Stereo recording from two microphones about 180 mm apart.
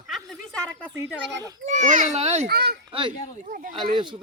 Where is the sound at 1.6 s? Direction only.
40° right (ahead or behind).